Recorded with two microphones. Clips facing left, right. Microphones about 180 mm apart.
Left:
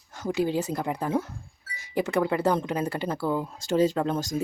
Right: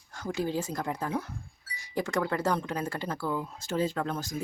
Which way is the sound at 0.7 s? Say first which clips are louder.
Left 5 dB; 15° left (ahead or behind).